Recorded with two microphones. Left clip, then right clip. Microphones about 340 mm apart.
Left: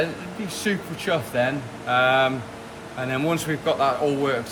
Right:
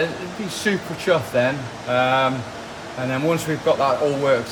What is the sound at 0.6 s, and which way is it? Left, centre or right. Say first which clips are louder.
Speech: right 4 dB; centre.